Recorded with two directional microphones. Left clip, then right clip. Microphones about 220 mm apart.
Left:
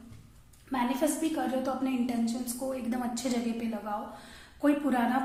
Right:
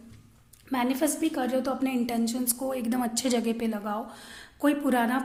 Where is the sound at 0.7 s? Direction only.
50° right (ahead or behind).